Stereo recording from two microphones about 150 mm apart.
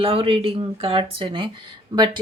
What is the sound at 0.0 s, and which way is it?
A woman's voice, 40° right (ahead or behind).